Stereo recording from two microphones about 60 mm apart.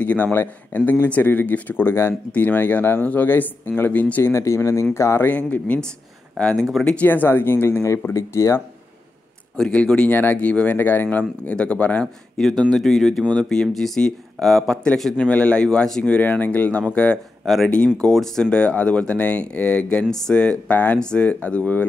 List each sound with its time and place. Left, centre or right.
0.0 s a man's voice: left
4.2 s speech: left
5.2 s speech: left
6.3 s speech: centre
7.1 s speech: left
8.3 s speech: left
9.6 s speech: centre
10.1 s speech: left
12.4 s speech: centre
15.1 s speech: centre
17.4 s speech: centre
18.5 s speech: centre